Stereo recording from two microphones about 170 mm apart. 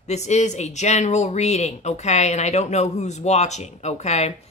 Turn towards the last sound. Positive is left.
turn(degrees=40)  # may be behind; listen again after turning